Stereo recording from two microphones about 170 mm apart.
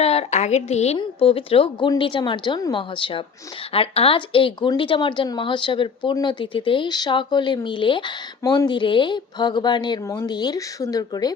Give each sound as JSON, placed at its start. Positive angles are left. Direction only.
{"t": 0.0, "sound": "a woman's voice", "side_deg": 40}